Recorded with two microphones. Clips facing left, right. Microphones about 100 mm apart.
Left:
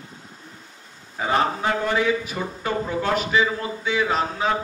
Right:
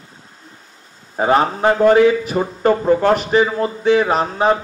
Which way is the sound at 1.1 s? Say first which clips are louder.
Right 6 dB; 50° right (ahead or behind).